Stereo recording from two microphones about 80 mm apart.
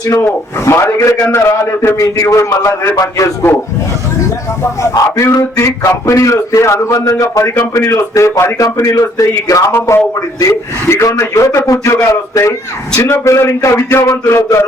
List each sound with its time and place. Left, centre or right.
0.0 s a man's voice: left
4.6 s a man's voice: left